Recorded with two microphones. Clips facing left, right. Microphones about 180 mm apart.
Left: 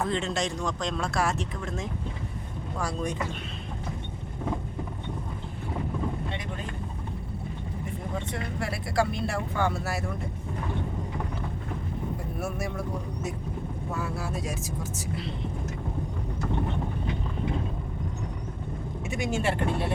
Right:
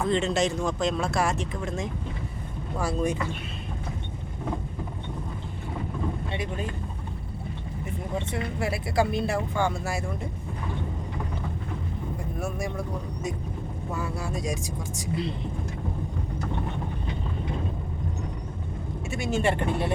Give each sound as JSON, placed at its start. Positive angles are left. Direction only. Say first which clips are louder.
{"t": 0.1, "sound": "speech", "louder": "right 5 dB", "side_deg": 0}
{"t": 8.5, "sound": "speech", "louder": "right 2 dB", "side_deg": -5}
{"t": 12.4, "sound": "speech", "louder": "right 2 dB", "side_deg": 5}
{"t": 13.9, "sound": "speech", "louder": "right 1 dB", "side_deg": 0}
{"t": 19.1, "sound": "speech", "louder": "right 1 dB", "side_deg": 15}
{"t": 19.4, "sound": "speech", "louder": "right 4 dB", "side_deg": 5}